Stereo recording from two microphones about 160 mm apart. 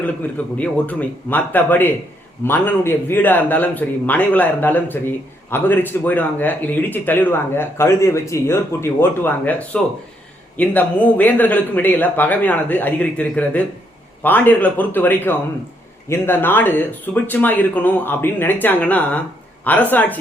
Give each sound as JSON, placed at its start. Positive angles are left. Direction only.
{"t": 0.0, "sound": "speech", "side_deg": 10}